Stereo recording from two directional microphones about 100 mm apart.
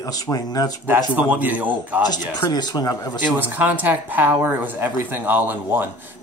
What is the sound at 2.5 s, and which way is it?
Speech, 45° left (ahead or behind).